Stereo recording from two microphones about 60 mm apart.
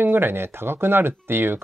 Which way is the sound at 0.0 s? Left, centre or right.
Right.